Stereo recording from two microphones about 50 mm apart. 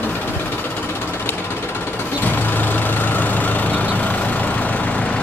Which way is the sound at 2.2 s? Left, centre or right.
Left.